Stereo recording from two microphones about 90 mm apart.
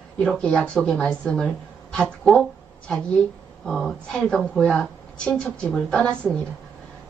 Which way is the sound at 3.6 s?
5° left (ahead or behind).